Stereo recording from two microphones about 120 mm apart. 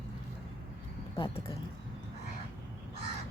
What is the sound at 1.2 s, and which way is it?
Speech, 50° left (ahead or behind).